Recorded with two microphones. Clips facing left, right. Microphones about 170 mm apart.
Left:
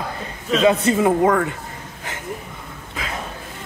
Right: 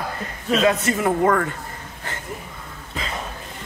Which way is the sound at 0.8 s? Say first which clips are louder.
Left 3 dB; 20° left (ahead or behind).